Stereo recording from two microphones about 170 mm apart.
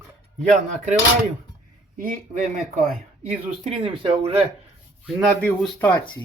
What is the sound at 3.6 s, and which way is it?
Speech, 35° right (ahead or behind).